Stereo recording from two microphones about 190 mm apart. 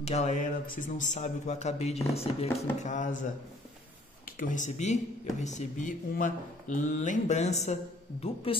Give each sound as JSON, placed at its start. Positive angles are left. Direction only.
{"t": 0.0, "sound": "speech", "side_deg": 35}
{"t": 4.4, "sound": "speech", "side_deg": 40}